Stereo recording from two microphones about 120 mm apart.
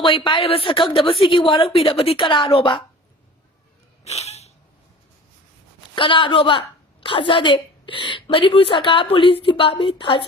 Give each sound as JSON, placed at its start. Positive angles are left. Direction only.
{"t": 0.0, "sound": "a woman's voice", "side_deg": 45}
{"t": 4.0, "sound": "a sound", "side_deg": 65}
{"t": 5.9, "sound": "a woman's voice", "side_deg": 45}